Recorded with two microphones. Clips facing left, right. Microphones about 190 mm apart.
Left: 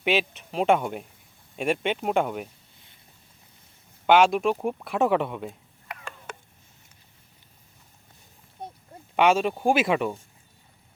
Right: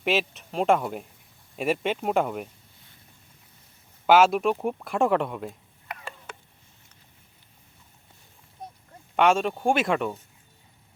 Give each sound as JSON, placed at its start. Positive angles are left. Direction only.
{"t": 0.0, "sound": "speech", "side_deg": 0}
{"t": 4.0, "sound": "speech", "side_deg": -5}
{"t": 6.3, "sound": "cat", "side_deg": 45}
{"t": 8.6, "sound": "a sound", "side_deg": 30}
{"t": 9.1, "sound": "speech", "side_deg": 0}